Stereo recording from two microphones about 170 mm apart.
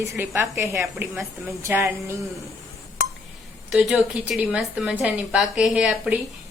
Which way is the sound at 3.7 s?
5° right (ahead or behind).